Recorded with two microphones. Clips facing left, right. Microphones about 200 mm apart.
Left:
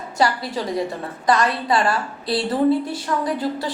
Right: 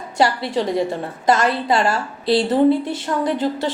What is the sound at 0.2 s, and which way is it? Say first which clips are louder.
A woman's voice: right 3 dB; 25° right (ahead or behind).